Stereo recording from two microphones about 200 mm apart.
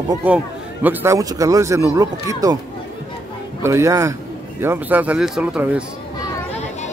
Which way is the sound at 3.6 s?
15° right (ahead or behind).